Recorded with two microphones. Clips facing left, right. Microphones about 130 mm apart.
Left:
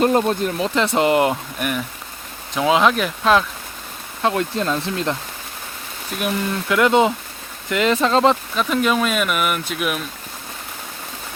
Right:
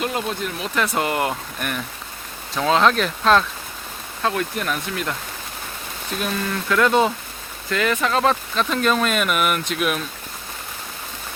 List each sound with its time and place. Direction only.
0.0 s speech: 40° left (ahead or behind)
0.8 s speech: 25° left (ahead or behind)
1.5 s speech: 5° left (ahead or behind)
4.2 s speech: 20° left (ahead or behind)
6.1 s speech: 15° left (ahead or behind)
8.5 s speech: 10° left (ahead or behind)